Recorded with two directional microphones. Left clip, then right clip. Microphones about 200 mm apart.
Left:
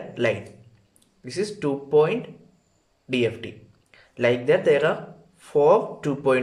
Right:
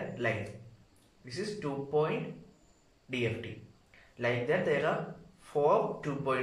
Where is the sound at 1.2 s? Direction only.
50° left (ahead or behind).